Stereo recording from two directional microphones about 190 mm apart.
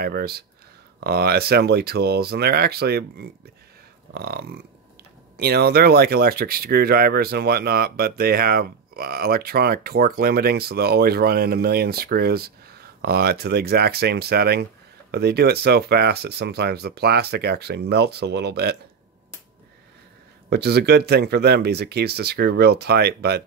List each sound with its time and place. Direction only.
0.0 s speech: 55° right (ahead or behind)
20.4 s speech: 60° right (ahead or behind)